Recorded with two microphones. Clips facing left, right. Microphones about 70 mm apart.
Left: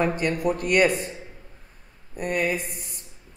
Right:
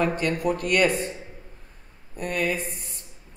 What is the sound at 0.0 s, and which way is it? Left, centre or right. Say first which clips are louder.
Speech: left 1 dB; centre.